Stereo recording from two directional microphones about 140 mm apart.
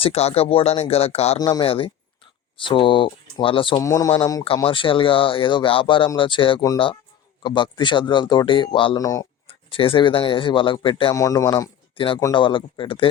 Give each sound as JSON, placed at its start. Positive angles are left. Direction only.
{"t": 0.0, "sound": "speech", "side_deg": 45}
{"t": 1.4, "sound": "speech", "side_deg": 30}
{"t": 1.6, "sound": "speech", "side_deg": 40}
{"t": 3.8, "sound": "speech", "side_deg": 25}
{"t": 4.6, "sound": "speech", "side_deg": 40}
{"t": 9.0, "sound": "speech", "side_deg": 25}
{"t": 9.5, "sound": "speech", "side_deg": 40}
{"t": 11.1, "sound": "speech", "side_deg": 25}
{"t": 11.9, "sound": "speech", "side_deg": 40}